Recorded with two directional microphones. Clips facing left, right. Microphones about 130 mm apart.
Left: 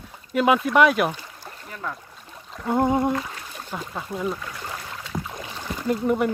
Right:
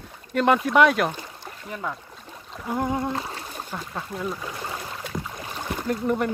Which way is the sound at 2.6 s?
25° left (ahead or behind).